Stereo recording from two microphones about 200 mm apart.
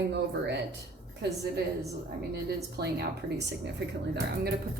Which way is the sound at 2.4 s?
55° right (ahead or behind).